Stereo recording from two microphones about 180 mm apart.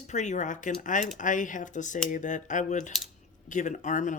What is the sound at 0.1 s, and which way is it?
Speech, 40° left (ahead or behind).